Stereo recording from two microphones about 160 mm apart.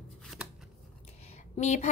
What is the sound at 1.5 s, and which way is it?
Speech, 45° left (ahead or behind).